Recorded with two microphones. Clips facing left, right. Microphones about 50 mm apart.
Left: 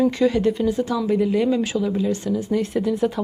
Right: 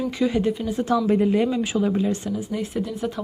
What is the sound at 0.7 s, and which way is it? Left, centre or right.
Speech, right.